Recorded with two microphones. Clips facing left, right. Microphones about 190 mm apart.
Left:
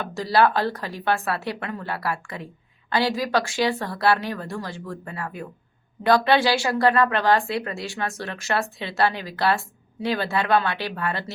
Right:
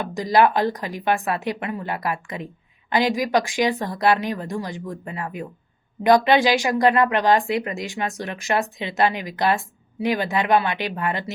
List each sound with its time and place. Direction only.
0.0 s a woman's voice: 15° right (ahead or behind)